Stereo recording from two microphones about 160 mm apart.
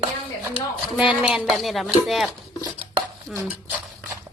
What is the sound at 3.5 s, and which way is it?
Speech, 10° right (ahead or behind).